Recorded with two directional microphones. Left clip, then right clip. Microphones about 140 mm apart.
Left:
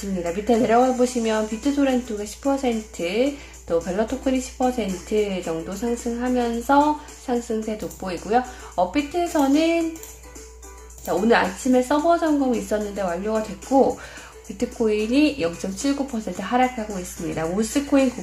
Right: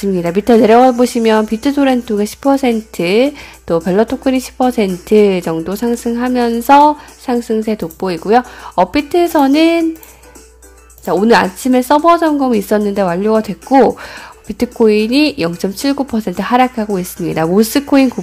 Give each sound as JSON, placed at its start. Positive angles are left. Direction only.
{"t": 0.2, "sound": "speech", "side_deg": -65}
{"t": 11.1, "sound": "speech", "side_deg": -60}
{"t": 14.6, "sound": "speech", "side_deg": -55}